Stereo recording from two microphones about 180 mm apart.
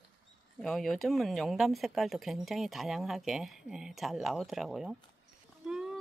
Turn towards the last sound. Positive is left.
turn(degrees=-5)  # may be behind; listen again after turning